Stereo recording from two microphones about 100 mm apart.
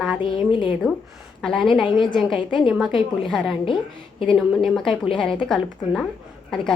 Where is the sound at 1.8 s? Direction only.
50° left (ahead or behind).